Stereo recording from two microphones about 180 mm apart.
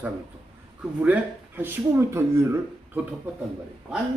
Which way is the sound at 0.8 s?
10° right (ahead or behind).